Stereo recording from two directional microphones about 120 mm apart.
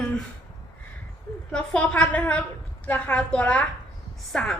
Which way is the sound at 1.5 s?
10° left (ahead or behind).